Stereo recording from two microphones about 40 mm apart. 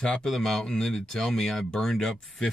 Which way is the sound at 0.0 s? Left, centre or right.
Centre.